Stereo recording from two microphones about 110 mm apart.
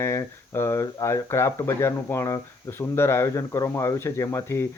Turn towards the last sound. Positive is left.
turn(degrees=25)  # may be behind; listen again after turning